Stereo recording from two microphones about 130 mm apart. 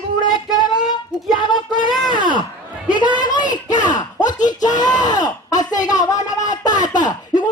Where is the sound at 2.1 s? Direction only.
90° left.